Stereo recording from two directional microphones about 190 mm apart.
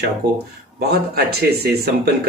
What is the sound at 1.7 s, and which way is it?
Speech, 55° right (ahead or behind).